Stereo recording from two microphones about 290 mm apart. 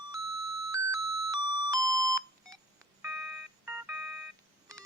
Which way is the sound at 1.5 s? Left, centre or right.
Centre.